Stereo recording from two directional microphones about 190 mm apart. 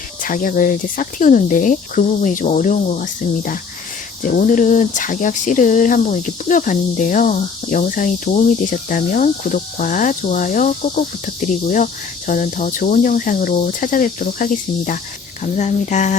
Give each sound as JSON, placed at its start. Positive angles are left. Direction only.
{"t": 0.2, "sound": "speech", "side_deg": 45}